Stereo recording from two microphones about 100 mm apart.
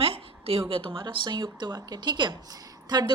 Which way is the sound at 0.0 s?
70° right (ahead or behind).